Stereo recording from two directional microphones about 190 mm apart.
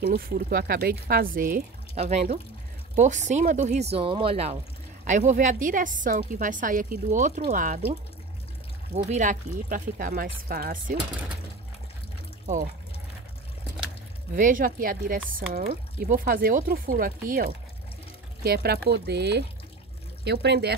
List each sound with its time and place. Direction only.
0.0 s a woman's voice: 50° right (ahead or behind)
14.3 s a woman's voice: 45° right (ahead or behind)